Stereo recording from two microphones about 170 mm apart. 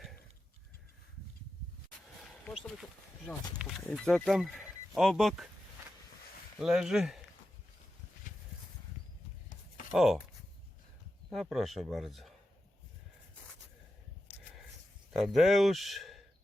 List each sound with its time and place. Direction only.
3.2 s speech: 5° left (ahead or behind)
6.6 s speech: 5° right (ahead or behind)
8.3 s a sound: 50° left (ahead or behind)
9.9 s speech: centre (ahead or behind)
11.3 s speech: centre (ahead or behind)
15.1 s speech: centre (ahead or behind)